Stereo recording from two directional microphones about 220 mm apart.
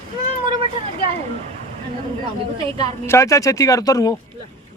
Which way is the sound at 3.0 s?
10° left (ahead or behind).